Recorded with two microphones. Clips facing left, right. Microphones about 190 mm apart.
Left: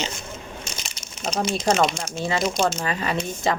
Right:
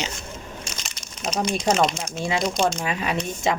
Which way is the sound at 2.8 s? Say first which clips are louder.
Even; 5° right (ahead or behind).